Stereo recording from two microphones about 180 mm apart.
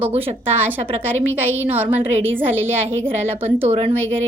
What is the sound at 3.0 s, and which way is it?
Speech, 10° right (ahead or behind).